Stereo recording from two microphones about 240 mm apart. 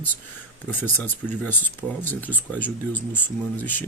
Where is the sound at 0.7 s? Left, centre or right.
Centre.